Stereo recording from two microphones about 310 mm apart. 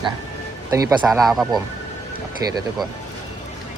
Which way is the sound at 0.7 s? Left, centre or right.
Centre.